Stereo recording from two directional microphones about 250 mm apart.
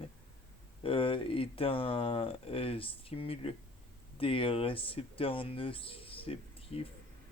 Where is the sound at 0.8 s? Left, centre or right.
Left.